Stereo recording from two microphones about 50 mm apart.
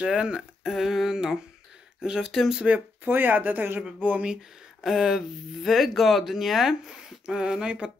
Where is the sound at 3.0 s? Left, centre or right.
Right.